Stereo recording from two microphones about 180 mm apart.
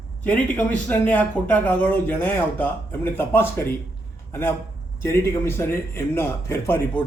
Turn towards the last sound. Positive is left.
turn(degrees=10)  # may be behind; listen again after turning